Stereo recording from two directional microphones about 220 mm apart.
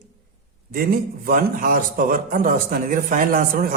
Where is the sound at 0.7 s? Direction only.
40° right (ahead or behind).